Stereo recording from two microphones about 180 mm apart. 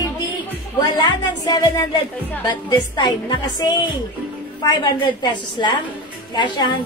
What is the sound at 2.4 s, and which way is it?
A woman's voice, 25° left (ahead or behind).